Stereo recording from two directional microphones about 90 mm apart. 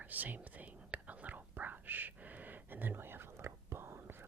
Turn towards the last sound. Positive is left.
turn(degrees=-25)  # may be behind; listen again after turning